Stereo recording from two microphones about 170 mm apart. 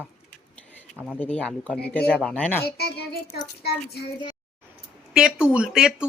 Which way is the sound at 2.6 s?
70° left (ahead or behind).